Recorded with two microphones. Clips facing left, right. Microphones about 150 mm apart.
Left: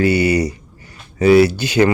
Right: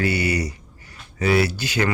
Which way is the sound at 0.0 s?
20° left (ahead or behind).